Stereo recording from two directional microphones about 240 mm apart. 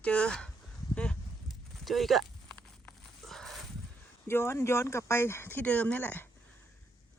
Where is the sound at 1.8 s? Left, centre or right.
Centre.